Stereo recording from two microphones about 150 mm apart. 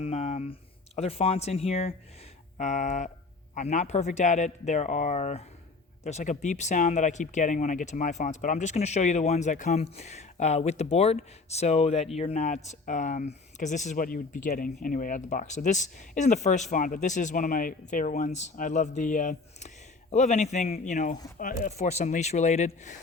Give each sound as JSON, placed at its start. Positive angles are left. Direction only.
{"t": 0.0, "sound": "a sound", "side_deg": 45}
{"t": 0.9, "sound": "speech", "side_deg": 40}
{"t": 2.6, "sound": "speech", "side_deg": 55}